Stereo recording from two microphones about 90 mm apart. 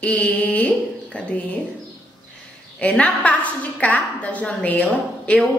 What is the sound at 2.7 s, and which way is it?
A woman's voice, 15° left (ahead or behind).